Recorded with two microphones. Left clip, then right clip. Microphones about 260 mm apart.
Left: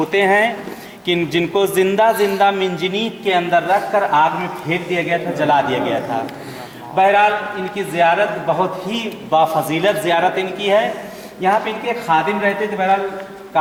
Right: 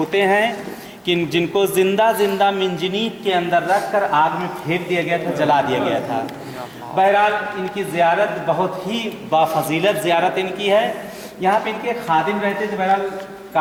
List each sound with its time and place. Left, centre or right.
0.1 s speech: centre
5.8 s speech: centre
8.4 s a man's voice: left
8.8 s speech: centre